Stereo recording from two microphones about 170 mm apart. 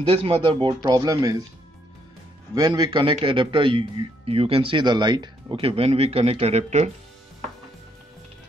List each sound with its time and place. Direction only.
0.1 s a man's voice: 35° right (ahead or behind)
2.5 s a man's voice: 25° right (ahead or behind); by 6.9 s 40° right (ahead or behind)